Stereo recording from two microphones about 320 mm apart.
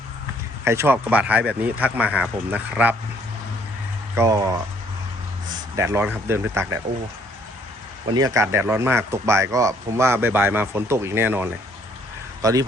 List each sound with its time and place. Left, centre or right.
0.6 s speech: centre
4.1 s speech: centre
5.7 s speech: centre
8.1 s speech: centre